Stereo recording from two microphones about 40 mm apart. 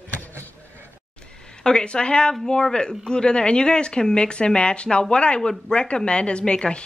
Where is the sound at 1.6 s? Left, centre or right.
Left.